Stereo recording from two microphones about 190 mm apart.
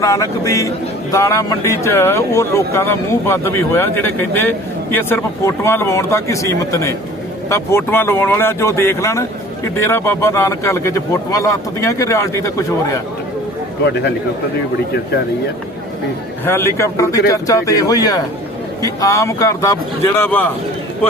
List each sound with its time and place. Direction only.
0.0 s speech: 15° left (ahead or behind)
16.5 s speech: 15° left (ahead or behind)